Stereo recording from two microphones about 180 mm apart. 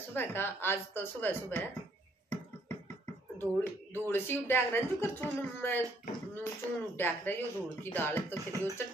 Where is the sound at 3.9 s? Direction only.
10° left (ahead or behind).